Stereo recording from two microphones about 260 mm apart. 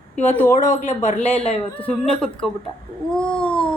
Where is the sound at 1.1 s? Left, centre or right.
Left.